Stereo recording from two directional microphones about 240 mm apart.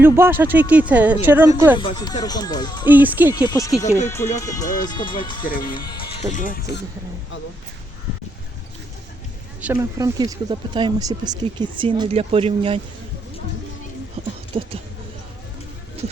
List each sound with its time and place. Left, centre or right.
0.0 s a woman's voice: centre
1.8 s speech: centre
2.8 s a woman's voice: centre
3.3 s speech: centre
5.5 s speech: left
5.7 s music: centre
6.3 s speech: left
9.6 s speech: centre
10.2 s speech: centre
14.2 s a sound: right
14.5 s speech: right